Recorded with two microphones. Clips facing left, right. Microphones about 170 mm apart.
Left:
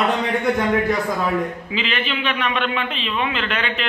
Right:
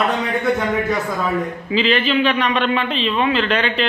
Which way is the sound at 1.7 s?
35° right (ahead or behind).